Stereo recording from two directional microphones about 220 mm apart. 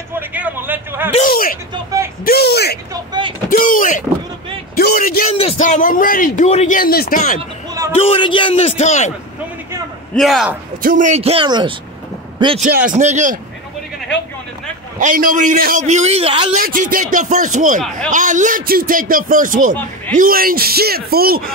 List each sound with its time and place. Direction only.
0.1 s a sound: 5° right (ahead or behind)
1.1 s a man's voice: 40° left (ahead or behind)
2.9 s a man's voice: 20° right (ahead or behind)
3.4 s a man's voice: 40° left (ahead or behind)
7.9 s a man's voice: 25° left (ahead or behind)
10.1 s a man's voice: centre (ahead or behind)
10.8 s a man's voice: 35° right (ahead or behind); by 11.7 s 20° right (ahead or behind)
12.7 s a man's voice: 35° right (ahead or behind)
15.0 s a man's voice: 40° right (ahead or behind)
16.6 s a man's voice: 40° right (ahead or behind)
17.8 s a man's voice: centre (ahead or behind)
18.1 s a man's voice: 35° right (ahead or behind)